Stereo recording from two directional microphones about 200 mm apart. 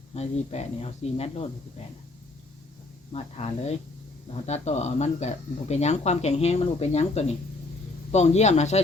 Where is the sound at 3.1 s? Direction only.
30° left (ahead or behind).